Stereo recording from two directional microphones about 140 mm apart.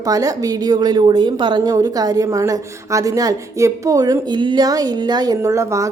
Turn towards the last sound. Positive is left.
turn(degrees=-20)  # may be behind; listen again after turning